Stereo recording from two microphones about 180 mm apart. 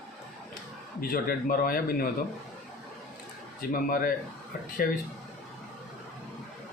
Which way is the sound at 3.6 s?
50° left (ahead or behind).